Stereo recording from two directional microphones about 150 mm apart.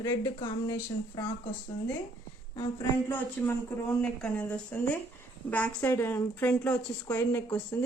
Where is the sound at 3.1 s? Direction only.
10° left (ahead or behind).